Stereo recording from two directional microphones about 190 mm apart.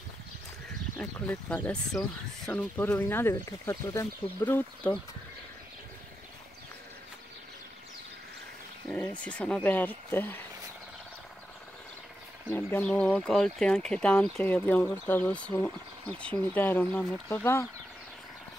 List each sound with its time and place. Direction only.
0.9 s speech: 10° left (ahead or behind)
8.8 s speech: 10° left (ahead or behind)
12.4 s speech: 10° left (ahead or behind)